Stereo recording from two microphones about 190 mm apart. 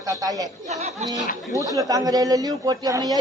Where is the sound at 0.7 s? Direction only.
35° right (ahead or behind).